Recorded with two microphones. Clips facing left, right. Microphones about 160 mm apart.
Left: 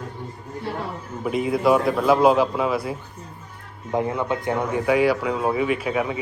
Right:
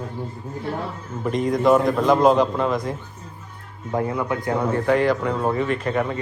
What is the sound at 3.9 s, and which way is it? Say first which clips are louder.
Speech: even; 20° left (ahead or behind).